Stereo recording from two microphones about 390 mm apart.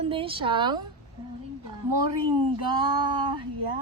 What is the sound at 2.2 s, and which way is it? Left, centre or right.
Speech, right.